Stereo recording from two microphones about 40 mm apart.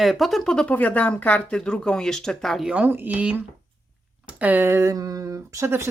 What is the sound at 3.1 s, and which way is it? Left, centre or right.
Speech, right.